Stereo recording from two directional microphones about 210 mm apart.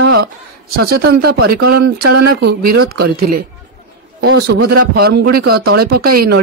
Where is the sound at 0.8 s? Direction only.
50° right (ahead or behind).